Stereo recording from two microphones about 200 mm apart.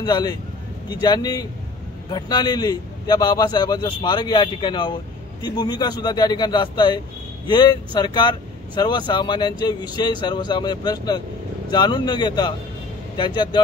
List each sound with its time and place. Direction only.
0.0 s a man's voice: 20° left (ahead or behind)